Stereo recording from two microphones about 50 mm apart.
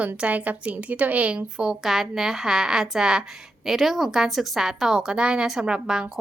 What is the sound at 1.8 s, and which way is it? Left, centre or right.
A woman's voice, centre.